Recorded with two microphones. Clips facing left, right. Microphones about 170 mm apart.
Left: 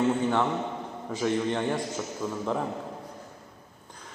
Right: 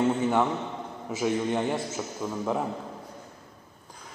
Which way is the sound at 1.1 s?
10° right (ahead or behind).